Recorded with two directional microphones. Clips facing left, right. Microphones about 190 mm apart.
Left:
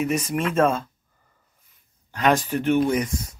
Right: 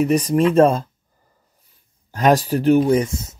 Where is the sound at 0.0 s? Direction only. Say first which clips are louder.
Right 8 dB; 35° right (ahead or behind).